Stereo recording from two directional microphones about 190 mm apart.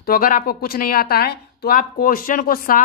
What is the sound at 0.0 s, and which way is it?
Speech, 50° left (ahead or behind).